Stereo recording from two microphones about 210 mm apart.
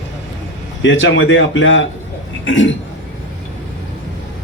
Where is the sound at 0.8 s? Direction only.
65° left (ahead or behind).